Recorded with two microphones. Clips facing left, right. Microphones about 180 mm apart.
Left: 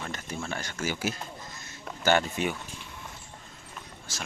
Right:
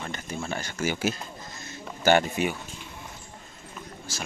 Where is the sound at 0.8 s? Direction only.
20° right (ahead or behind).